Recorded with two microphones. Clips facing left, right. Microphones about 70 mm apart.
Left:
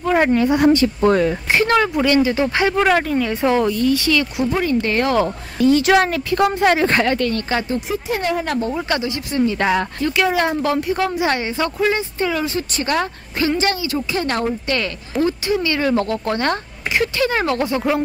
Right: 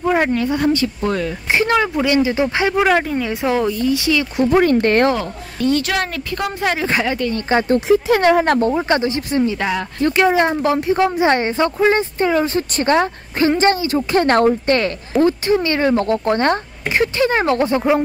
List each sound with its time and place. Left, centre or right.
0.3 s speech: centre
0.7 s speech: left
1.5 s speech: centre
4.4 s speech: right
5.6 s speech: centre; by 7.6 s right
8.1 s speech: right
8.5 s speech: right
8.7 s speech: right
14.1 s speech: right
15.2 s speech: right